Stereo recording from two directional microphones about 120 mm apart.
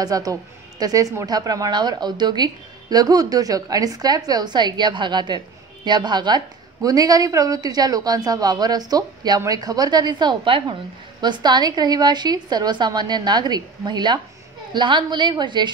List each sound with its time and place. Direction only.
0.0 s a woman's voice: 30° right (ahead or behind)